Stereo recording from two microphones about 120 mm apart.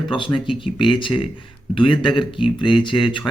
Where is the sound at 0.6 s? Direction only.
45° left (ahead or behind).